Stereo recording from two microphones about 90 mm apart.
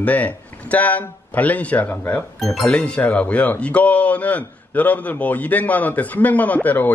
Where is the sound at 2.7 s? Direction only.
15° left (ahead or behind).